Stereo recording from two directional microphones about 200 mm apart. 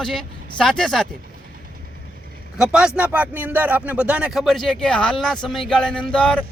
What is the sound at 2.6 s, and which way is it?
Speech, 5° right (ahead or behind).